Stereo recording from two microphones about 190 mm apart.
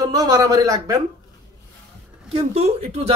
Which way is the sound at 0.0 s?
20° right (ahead or behind).